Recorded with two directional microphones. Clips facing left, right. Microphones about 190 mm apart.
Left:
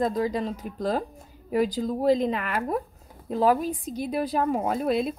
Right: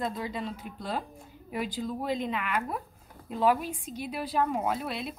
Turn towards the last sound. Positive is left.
turn(degrees=45)  # may be behind; listen again after turning